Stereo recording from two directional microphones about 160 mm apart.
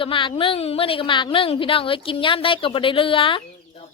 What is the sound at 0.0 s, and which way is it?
A woman's voice, 30° left (ahead or behind).